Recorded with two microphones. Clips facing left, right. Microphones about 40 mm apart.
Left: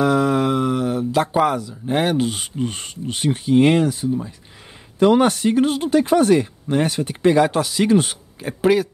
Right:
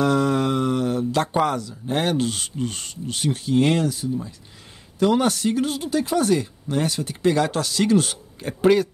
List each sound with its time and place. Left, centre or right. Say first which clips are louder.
0.0 s speech: left 3 dB; centre; by 7.3 s left
7.3 s speech: left 5 dB; centre
8.4 s speech: left 1 dB; centre